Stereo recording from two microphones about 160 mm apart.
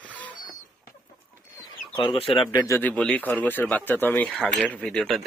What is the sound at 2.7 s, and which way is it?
Speech, 10° left (ahead or behind).